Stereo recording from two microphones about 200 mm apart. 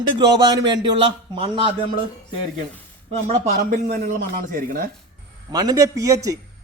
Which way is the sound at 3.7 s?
40° right (ahead or behind).